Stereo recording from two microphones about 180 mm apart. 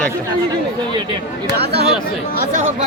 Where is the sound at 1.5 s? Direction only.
65° right (ahead or behind).